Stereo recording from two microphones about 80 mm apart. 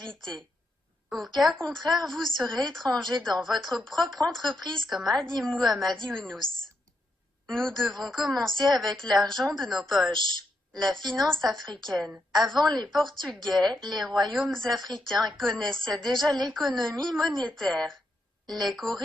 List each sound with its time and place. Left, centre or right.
0.1 s a woman's voice: centre
7.4 s a woman's voice: centre